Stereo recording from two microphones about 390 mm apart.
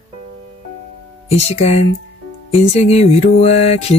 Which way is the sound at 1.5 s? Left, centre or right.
Centre.